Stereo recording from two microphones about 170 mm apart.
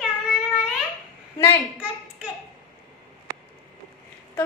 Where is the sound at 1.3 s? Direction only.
15° left (ahead or behind).